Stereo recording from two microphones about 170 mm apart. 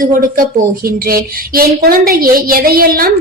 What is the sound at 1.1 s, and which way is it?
A woman's voice, 60° right (ahead or behind).